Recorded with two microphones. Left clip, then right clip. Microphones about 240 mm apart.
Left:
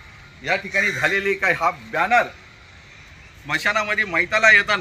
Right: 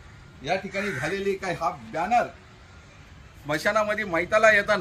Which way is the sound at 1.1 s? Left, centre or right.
Left.